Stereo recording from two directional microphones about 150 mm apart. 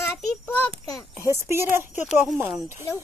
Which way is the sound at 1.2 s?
15° right (ahead or behind).